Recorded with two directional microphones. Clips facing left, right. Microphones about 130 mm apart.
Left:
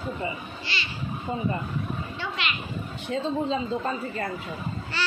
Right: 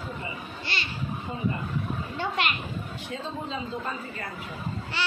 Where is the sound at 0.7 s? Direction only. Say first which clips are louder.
Even; 50° right (ahead or behind).